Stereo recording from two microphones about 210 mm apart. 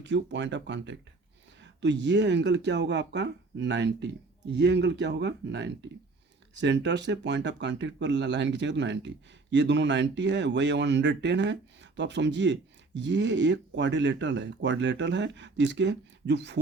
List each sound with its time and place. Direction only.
0.0 s speech: 55° right (ahead or behind)